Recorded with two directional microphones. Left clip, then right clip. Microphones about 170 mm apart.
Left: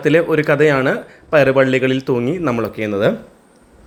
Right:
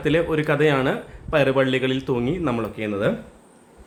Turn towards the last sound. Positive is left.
turn(degrees=25)  # may be behind; listen again after turning